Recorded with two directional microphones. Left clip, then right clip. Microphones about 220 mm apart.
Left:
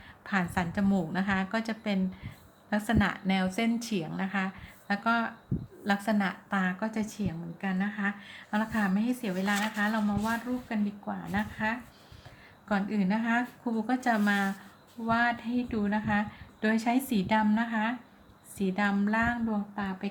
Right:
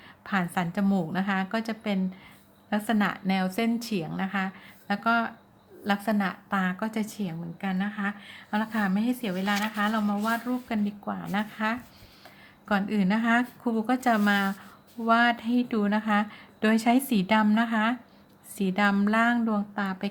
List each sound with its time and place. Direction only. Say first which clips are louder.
0.3 s a woman's voice: right 2 dB; 15° right (ahead or behind); by 20.1 s 30° right (ahead or behind)